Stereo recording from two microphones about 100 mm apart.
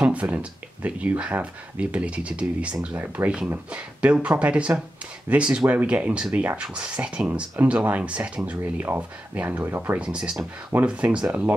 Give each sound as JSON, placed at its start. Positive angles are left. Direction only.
{"t": 0.0, "sound": "speech", "side_deg": -15}